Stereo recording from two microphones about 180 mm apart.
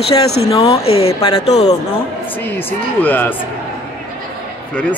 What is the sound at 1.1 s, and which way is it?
Speech, 20° left (ahead or behind).